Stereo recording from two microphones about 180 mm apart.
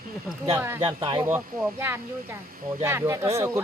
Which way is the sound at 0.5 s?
15° right (ahead or behind).